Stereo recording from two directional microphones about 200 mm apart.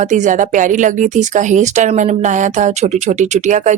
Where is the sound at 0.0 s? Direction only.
40° right (ahead or behind).